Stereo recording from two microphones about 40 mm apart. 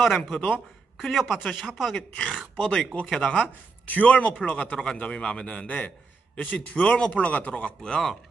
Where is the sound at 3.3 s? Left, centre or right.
Left.